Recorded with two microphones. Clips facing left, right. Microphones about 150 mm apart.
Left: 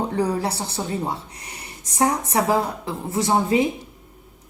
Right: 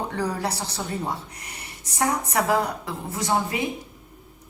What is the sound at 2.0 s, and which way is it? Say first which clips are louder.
A woman's voice: left 3 dB; 25° left (ahead or behind).